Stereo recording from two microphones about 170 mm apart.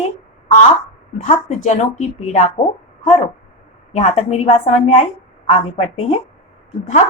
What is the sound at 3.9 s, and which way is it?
A woman's voice, 40° left (ahead or behind).